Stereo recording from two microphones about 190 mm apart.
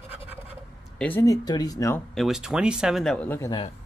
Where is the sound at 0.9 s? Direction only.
10° left (ahead or behind).